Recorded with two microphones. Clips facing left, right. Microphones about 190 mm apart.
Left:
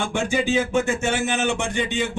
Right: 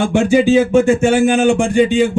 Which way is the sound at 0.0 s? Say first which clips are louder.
Right 11 dB; 35° right (ahead or behind).